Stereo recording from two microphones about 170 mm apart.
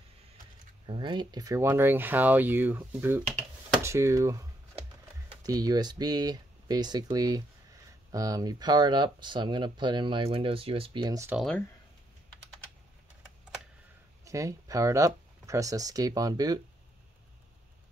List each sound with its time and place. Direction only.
0.8 s speech: 30° right (ahead or behind)
14.2 s speech: 20° right (ahead or behind)